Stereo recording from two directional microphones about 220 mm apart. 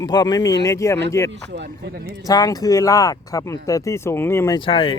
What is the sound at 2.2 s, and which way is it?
Speech, 15° left (ahead or behind).